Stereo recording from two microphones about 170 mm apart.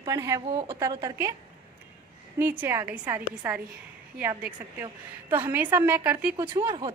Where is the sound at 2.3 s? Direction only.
15° right (ahead or behind).